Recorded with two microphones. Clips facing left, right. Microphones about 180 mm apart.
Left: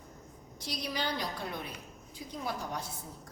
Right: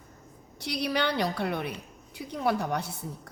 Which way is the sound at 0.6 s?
65° right (ahead or behind).